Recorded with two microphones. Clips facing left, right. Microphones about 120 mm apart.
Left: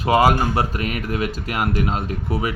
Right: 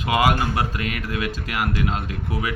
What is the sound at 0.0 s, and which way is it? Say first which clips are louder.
Speech: left 4 dB; 30° left (ahead or behind).